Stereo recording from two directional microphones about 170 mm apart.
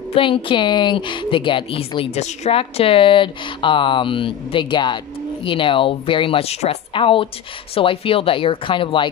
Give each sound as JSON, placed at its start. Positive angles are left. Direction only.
{"t": 0.1, "sound": "a woman's voice", "side_deg": 30}